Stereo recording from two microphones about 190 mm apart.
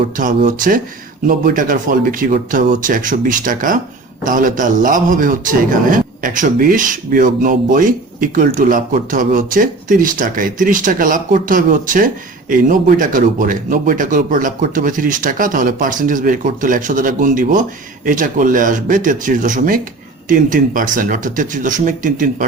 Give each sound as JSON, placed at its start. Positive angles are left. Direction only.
{"t": 0.2, "sound": "a man's voice", "side_deg": -45}